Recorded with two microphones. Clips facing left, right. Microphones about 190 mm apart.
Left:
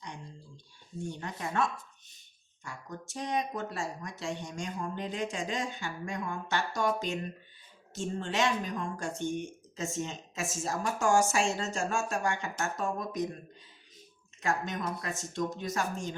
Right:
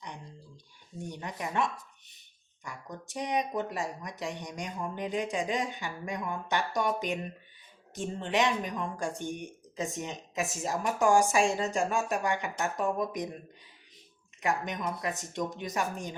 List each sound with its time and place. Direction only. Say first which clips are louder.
1.0 s speech: even; 20° right (ahead or behind)
2.6 s speech: even; 15° right (ahead or behind)
14.4 s speech: right 1 dB; 15° right (ahead or behind)